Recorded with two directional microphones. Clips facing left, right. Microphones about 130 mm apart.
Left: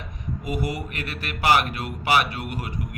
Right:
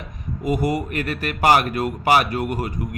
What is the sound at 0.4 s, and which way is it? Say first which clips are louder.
A man's voice: right 7 dB; 45° right (ahead or behind).